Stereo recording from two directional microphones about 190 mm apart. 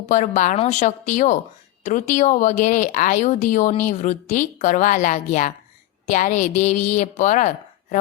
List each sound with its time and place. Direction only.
0.1 s speech: 40° left (ahead or behind)